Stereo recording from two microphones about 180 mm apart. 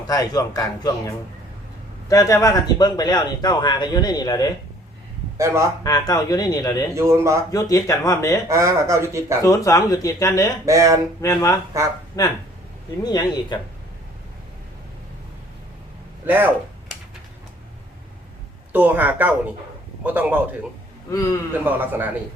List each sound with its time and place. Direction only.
0.1 s a man's voice: 20° left (ahead or behind)
5.4 s speech: 15° right (ahead or behind)
5.8 s a man's voice: 20° left (ahead or behind)
6.9 s speech: 15° right (ahead or behind)
7.5 s a man's voice: 20° left (ahead or behind)
8.4 s speech: 15° right (ahead or behind)
9.4 s a man's voice: 20° left (ahead or behind)
10.7 s speech: 15° right (ahead or behind)
11.2 s a man's voice: 15° left (ahead or behind)
16.2 s speech: 10° right (ahead or behind)
18.7 s speech: 10° right (ahead or behind)
21.1 s speech: 20° left (ahead or behind)
21.6 s speech: 10° right (ahead or behind)